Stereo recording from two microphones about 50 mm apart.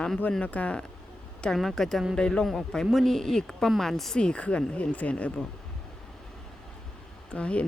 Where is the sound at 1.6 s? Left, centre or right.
Centre.